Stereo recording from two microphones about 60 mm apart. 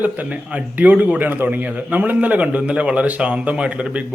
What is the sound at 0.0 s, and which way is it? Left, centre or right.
A man's voice, right.